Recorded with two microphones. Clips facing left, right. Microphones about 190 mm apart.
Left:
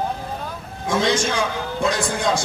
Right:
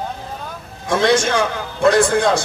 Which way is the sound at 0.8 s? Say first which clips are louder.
Right 4 dB; 65° right (ahead or behind).